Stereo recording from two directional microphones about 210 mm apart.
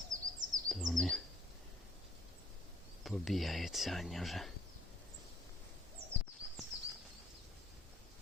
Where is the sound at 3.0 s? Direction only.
Centre (ahead or behind).